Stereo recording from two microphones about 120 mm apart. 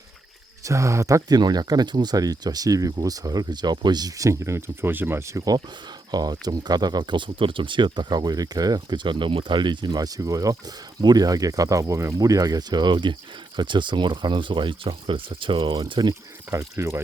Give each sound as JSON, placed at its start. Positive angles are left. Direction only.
{"t": 0.6, "sound": "speech", "side_deg": -25}
{"t": 6.1, "sound": "speech", "side_deg": -35}
{"t": 16.5, "sound": "speech", "side_deg": -25}